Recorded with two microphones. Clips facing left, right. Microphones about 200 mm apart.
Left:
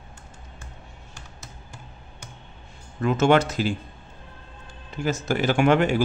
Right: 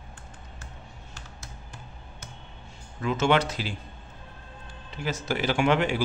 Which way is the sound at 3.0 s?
50° left (ahead or behind).